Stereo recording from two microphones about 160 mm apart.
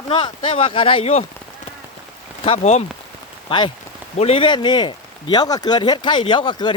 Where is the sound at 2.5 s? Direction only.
40° left (ahead or behind).